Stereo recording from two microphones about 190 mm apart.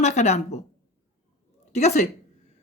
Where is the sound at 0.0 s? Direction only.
35° left (ahead or behind).